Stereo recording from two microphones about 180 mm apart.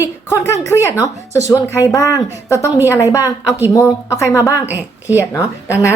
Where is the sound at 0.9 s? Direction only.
15° left (ahead or behind).